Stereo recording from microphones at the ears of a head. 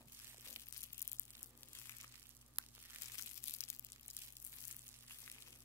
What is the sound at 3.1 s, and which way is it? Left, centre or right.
Crushing, left.